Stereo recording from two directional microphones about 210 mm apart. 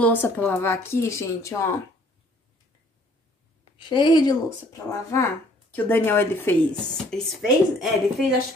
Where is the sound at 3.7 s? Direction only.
20° left (ahead or behind).